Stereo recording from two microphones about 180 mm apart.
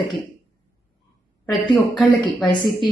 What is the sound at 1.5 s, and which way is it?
Speech, 25° left (ahead or behind).